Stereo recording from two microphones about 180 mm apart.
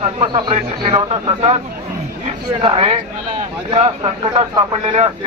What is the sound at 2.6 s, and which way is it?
Speech, 30° right (ahead or behind).